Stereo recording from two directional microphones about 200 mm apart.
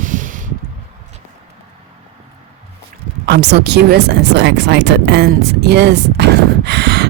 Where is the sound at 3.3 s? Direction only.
55° right (ahead or behind).